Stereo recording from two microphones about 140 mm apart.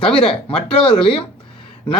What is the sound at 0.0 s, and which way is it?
A man's voice, 5° left (ahead or behind).